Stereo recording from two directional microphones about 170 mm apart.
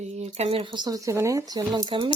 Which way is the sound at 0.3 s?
35° right (ahead or behind).